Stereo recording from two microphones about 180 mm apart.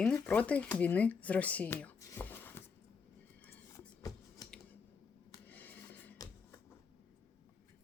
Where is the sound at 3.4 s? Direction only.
15° left (ahead or behind).